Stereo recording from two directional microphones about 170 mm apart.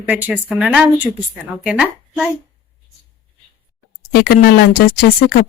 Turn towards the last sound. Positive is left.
turn(degrees=60)  # may be behind; listen again after turning